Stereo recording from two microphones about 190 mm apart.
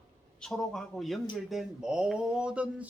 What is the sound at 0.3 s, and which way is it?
Speech, 5° left (ahead or behind).